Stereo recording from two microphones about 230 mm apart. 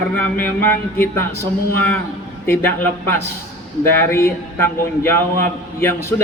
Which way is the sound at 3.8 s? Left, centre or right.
Centre.